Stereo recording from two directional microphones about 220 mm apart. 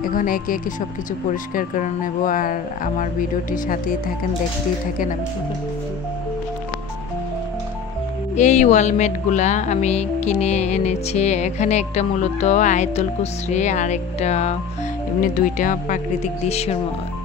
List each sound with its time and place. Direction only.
0.0 s music: 40° left (ahead or behind)
8.4 s music: 30° left (ahead or behind)